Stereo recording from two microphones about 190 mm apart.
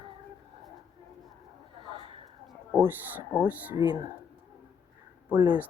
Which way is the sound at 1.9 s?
30° right (ahead or behind).